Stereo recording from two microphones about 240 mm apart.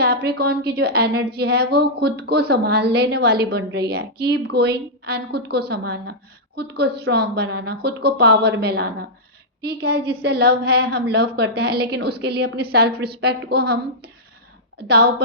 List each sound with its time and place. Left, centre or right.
0.0 s a woman's voice: right